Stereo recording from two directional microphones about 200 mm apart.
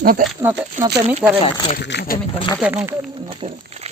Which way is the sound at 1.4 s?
30° left (ahead or behind).